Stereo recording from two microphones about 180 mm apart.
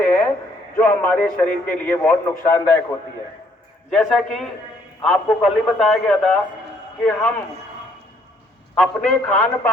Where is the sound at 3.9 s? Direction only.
5° left (ahead or behind).